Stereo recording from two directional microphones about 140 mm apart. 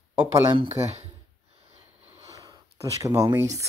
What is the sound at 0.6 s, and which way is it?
Speech, 50° right (ahead or behind).